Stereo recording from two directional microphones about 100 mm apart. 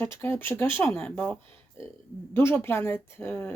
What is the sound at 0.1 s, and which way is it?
Speech, 20° left (ahead or behind).